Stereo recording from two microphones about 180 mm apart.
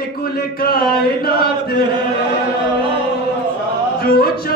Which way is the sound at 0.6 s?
55° left (ahead or behind).